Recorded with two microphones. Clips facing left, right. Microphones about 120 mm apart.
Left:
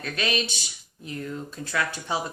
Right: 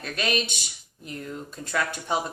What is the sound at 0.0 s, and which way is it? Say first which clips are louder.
A woman's voice: even; 45° right (ahead or behind).